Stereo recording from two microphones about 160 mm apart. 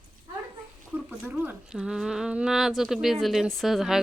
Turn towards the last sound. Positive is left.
turn(degrees=0)  # may be behind; listen again after turning